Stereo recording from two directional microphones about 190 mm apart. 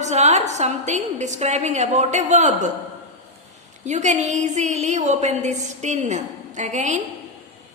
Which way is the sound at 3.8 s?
40° right (ahead or behind).